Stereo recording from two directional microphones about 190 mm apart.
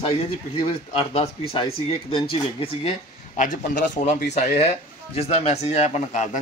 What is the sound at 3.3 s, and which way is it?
Speech, 45° left (ahead or behind).